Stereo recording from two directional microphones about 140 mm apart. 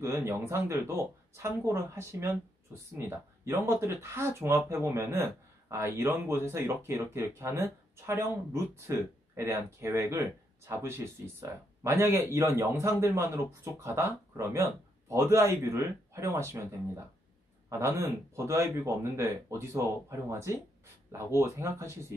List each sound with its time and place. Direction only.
0.0 s speech: 15° right (ahead or behind)